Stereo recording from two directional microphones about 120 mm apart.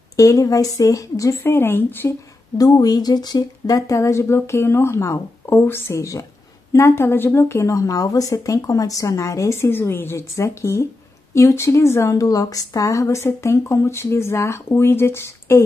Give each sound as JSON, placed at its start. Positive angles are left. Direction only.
{"t": 0.1, "sound": "a woman's voice", "side_deg": 30}
{"t": 2.5, "sound": "a woman's voice", "side_deg": 30}